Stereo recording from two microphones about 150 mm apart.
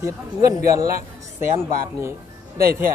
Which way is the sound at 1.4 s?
15° right (ahead or behind).